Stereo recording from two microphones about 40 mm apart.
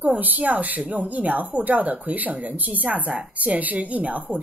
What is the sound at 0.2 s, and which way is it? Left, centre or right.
Speech, right.